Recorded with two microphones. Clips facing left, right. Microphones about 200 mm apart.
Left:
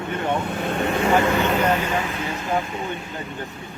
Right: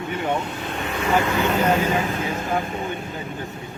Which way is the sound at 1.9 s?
45° right (ahead or behind).